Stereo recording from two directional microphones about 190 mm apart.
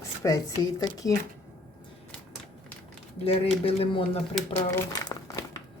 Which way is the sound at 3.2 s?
30° left (ahead or behind).